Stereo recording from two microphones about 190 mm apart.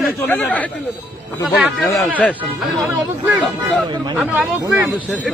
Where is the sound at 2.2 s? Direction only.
5° left (ahead or behind).